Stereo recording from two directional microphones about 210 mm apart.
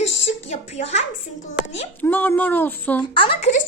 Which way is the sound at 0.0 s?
30° left (ahead or behind).